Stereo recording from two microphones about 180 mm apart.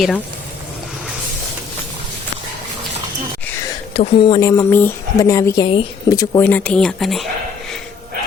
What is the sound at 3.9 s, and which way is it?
Speech, 35° left (ahead or behind).